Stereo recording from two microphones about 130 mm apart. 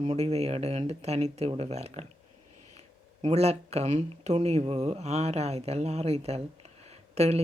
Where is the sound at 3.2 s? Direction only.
55° right (ahead or behind).